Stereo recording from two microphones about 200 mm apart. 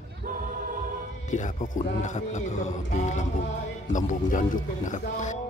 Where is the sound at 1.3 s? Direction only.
40° left (ahead or behind).